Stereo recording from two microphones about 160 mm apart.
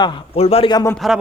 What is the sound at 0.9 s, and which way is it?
Speech, centre (ahead or behind).